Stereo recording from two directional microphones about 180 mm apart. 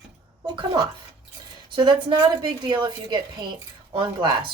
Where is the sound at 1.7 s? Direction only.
25° right (ahead or behind).